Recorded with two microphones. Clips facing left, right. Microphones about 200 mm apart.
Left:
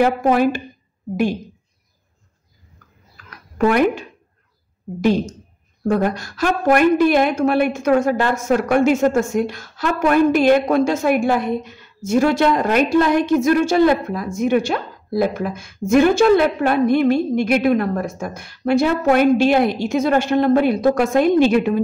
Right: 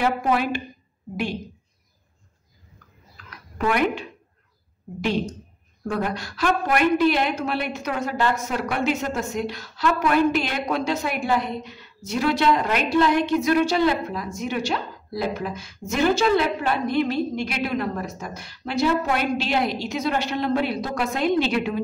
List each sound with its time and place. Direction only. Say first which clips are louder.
0.0 s a woman's voice: left 7 dB; 45° left (ahead or behind)
3.5 s a woman's voice: left 6 dB; 45° left (ahead or behind)